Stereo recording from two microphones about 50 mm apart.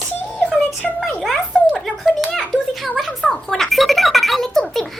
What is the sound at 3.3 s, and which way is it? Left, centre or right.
Speech, centre.